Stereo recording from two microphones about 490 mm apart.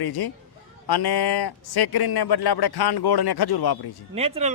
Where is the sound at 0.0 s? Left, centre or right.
Left.